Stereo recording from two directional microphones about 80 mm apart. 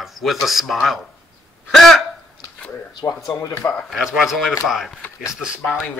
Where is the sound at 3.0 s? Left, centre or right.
Left.